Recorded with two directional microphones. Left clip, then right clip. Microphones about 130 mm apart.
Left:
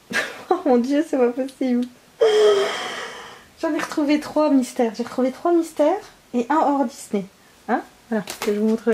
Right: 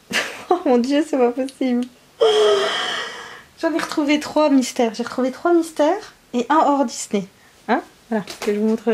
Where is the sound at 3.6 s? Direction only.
30° right (ahead or behind).